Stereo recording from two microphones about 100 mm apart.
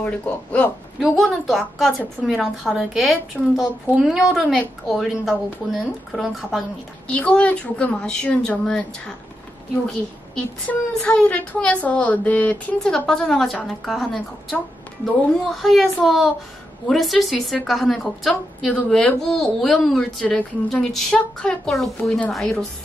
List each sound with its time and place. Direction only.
0.0 s speech: 15° left (ahead or behind)
0.9 s a woman's voice: centre (ahead or behind)
7.1 s a woman's voice: 10° left (ahead or behind)